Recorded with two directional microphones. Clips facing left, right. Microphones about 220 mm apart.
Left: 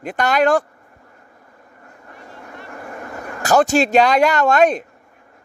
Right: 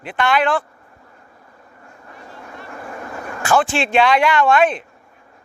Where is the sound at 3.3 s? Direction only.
40° left (ahead or behind).